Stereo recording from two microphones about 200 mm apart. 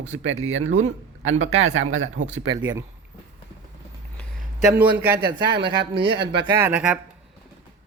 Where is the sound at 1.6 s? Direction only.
90° right.